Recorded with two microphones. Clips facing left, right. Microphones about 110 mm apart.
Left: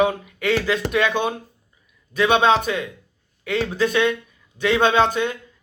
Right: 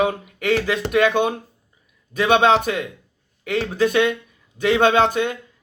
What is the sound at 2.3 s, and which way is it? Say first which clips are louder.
Speech: right 2 dB; 55° right (ahead or behind).